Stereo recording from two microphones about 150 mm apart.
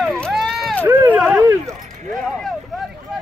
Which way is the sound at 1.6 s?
Centre (ahead or behind).